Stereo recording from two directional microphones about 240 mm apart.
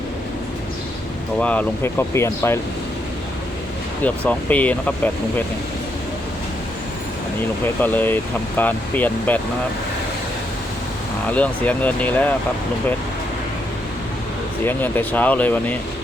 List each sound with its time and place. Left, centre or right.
1.4 s speech: centre
4.0 s speech: centre
7.8 s speech: centre
11.3 s speech: centre
14.6 s speech: centre